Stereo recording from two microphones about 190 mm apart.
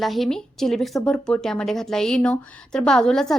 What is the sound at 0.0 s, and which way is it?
A woman's voice, centre (ahead or behind).